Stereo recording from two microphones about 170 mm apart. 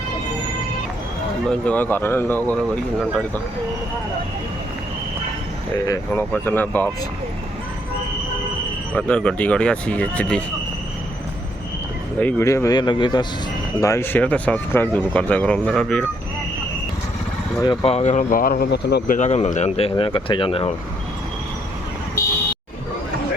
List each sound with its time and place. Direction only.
1.5 s speech: 10° left (ahead or behind)
5.9 s speech: 10° left (ahead or behind)
9.0 s speech: 5° left (ahead or behind)
12.2 s speech: 15° left (ahead or behind)
13.8 s speech: 15° left (ahead or behind)
17.8 s speech: 40° left (ahead or behind); by 19.1 s 75° left (ahead or behind)
19.1 s speech: 40° left (ahead or behind)